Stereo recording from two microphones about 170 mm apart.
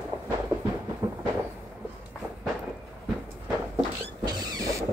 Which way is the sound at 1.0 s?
25° right (ahead or behind).